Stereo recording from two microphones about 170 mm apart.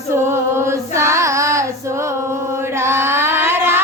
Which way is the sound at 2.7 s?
15° right (ahead or behind).